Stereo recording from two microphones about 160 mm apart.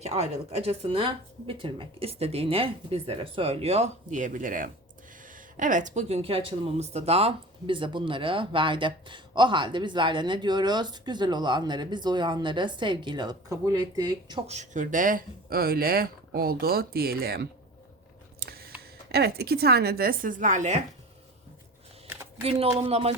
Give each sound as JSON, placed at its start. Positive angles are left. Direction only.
{"t": 0.0, "sound": "speech", "side_deg": -40}
{"t": 14.4, "sound": "speech", "side_deg": -45}
{"t": 18.3, "sound": "a sound", "side_deg": -75}
{"t": 19.0, "sound": "speech", "side_deg": -85}
{"t": 22.4, "sound": "speech", "side_deg": -35}